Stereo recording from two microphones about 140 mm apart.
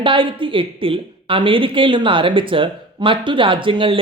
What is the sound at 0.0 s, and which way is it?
A woman's voice, 35° right (ahead or behind).